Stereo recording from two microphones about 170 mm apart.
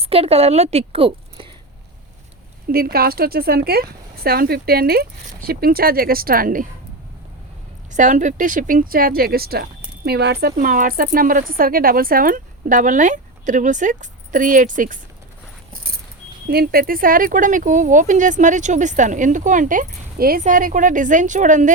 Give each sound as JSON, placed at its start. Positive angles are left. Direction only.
{"t": 0.0, "sound": "a woman's voice", "side_deg": -35}
{"t": 2.6, "sound": "speech", "side_deg": -60}
{"t": 7.9, "sound": "speech", "side_deg": -45}
{"t": 16.5, "sound": "speech", "side_deg": -65}